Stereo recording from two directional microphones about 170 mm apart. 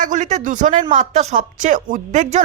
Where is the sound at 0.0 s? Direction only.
45° right (ahead or behind).